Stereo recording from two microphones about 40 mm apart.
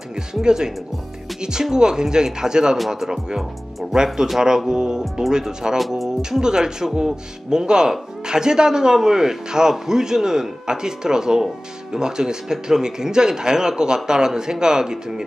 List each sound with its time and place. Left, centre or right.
0.3 s speech: centre
5.8 s speech: centre
6.4 s speech: centre